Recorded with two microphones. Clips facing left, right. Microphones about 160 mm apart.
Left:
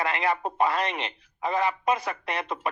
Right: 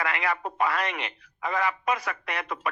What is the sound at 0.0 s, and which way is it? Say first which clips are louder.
Speech: left 2 dB; 25° left (ahead or behind).